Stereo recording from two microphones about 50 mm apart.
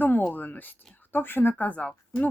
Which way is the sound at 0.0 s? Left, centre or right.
Left.